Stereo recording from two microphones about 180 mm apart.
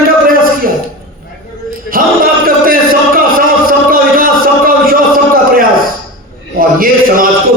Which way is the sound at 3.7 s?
50° right (ahead or behind).